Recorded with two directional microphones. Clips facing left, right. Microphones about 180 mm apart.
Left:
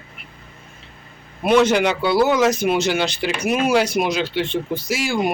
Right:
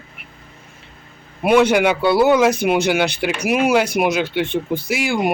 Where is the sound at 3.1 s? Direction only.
55° right (ahead or behind).